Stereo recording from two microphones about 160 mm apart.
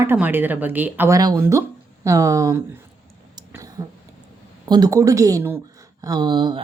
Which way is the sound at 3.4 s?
25° right (ahead or behind).